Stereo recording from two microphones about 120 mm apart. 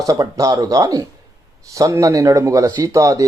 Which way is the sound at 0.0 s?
30° right (ahead or behind).